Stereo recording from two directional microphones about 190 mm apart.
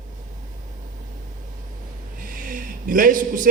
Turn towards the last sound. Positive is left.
turn(degrees=-45)  # may be behind; listen again after turning